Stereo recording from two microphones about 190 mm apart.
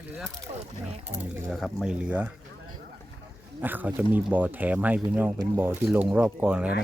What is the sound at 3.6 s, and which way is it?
Speech, 10° right (ahead or behind).